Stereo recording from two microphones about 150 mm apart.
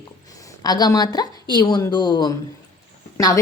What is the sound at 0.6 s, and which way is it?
A woman's voice, 25° left (ahead or behind).